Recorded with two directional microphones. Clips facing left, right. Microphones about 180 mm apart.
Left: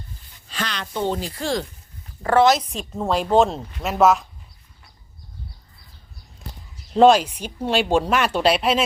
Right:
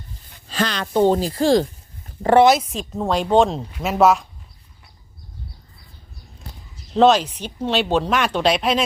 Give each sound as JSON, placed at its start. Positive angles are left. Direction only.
{"t": 0.5, "sound": "speech", "side_deg": -40}
{"t": 2.2, "sound": "a woman's voice", "side_deg": -15}
{"t": 6.9, "sound": "speech", "side_deg": 10}